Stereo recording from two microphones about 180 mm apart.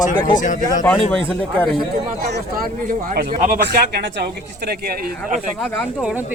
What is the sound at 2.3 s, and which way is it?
Speech, 55° right (ahead or behind).